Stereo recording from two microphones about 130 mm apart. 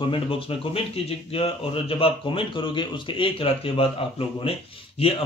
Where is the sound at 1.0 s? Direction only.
50° left (ahead or behind).